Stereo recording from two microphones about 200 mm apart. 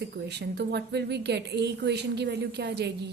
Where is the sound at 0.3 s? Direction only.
55° right (ahead or behind).